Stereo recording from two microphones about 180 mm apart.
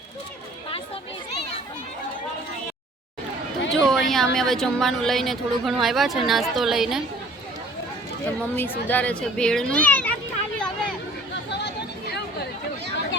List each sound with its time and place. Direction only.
3.7 s a woman's voice: centre (ahead or behind)
8.4 s a child's voice: 10° left (ahead or behind)
11.5 s a sound: 70° left (ahead or behind)